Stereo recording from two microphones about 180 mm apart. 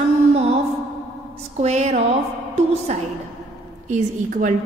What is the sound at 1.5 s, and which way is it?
A woman's voice, 40° right (ahead or behind).